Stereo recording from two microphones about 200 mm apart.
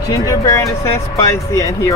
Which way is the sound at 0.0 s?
15° left (ahead or behind).